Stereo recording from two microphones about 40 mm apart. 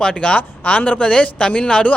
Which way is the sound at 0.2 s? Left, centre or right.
Left.